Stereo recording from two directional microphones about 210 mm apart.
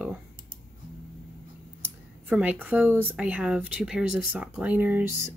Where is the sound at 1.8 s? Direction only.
5° right (ahead or behind).